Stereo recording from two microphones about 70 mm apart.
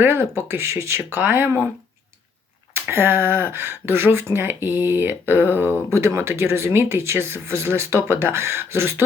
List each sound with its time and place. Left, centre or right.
0.0 s speech: right
2.7 s speech: right